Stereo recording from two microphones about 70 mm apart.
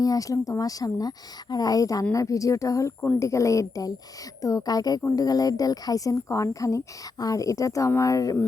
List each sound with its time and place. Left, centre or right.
0.0 s speech: left